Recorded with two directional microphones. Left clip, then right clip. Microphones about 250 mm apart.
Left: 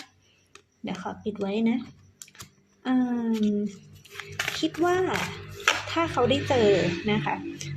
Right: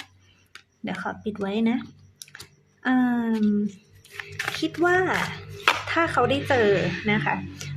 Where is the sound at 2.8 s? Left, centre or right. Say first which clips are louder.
Right 4 dB; centre.